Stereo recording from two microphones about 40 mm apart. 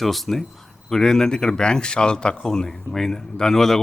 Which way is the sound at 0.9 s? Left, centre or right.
Centre.